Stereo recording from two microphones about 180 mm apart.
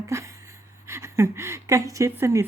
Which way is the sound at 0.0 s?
15° right (ahead or behind).